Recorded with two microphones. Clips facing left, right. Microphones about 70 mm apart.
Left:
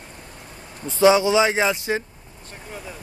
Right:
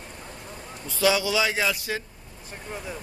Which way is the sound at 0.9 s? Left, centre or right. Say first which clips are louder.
Left 7 dB; left.